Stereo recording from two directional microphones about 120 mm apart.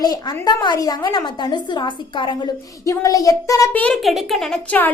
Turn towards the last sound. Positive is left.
turn(degrees=5)  # may be behind; listen again after turning